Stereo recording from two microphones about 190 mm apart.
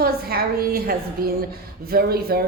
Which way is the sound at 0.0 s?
50° right (ahead or behind).